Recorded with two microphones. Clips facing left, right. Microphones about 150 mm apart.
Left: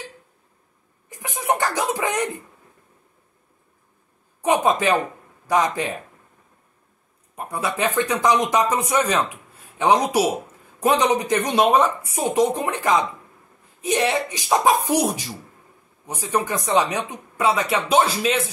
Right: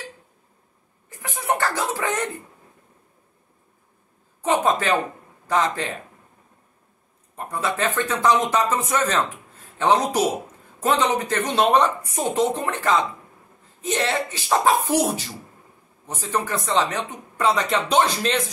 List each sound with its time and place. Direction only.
1.1 s chuckle: 15° left (ahead or behind)
4.4 s speech: 15° left (ahead or behind)
7.3 s speech: 10° left (ahead or behind)